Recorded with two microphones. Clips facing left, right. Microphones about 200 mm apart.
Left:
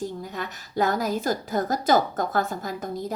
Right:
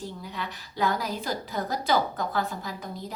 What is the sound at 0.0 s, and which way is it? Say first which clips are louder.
A woman's voice: left 5 dB; 45° left (ahead or behind).